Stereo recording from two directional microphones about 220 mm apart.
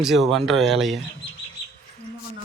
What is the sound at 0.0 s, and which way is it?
Speech, centre (ahead or behind).